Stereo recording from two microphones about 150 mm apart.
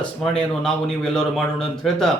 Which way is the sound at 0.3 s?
Centre (ahead or behind).